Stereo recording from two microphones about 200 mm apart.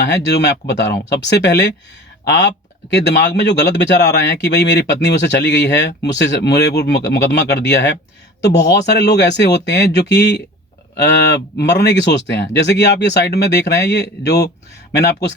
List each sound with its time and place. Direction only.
0.3 s speech: 60° left (ahead or behind)
2.9 s speech: 60° left (ahead or behind)
11.5 s speech: 55° left (ahead or behind)